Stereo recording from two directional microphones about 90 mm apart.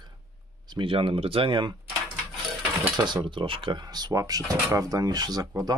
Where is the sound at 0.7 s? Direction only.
75° right (ahead or behind).